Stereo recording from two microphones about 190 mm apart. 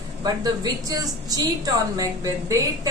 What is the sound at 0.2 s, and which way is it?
A woman's voice, 20° right (ahead or behind).